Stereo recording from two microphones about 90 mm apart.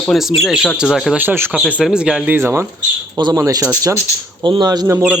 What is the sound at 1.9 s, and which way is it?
Speech, 10° right (ahead or behind).